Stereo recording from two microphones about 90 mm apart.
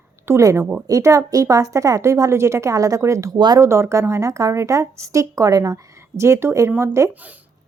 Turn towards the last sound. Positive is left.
turn(degrees=-35)  # may be behind; listen again after turning